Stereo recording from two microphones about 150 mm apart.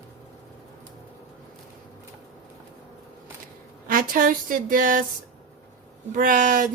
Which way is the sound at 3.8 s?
70° right (ahead or behind).